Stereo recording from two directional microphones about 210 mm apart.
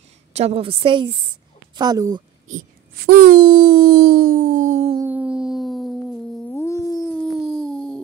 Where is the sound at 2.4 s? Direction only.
40° right (ahead or behind).